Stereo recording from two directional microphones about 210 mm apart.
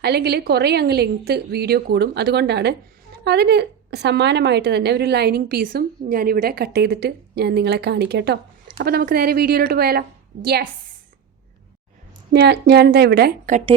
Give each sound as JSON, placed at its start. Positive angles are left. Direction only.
{"t": 0.0, "sound": "a woman's voice", "side_deg": -50}
{"t": 12.3, "sound": "a woman's voice", "side_deg": -50}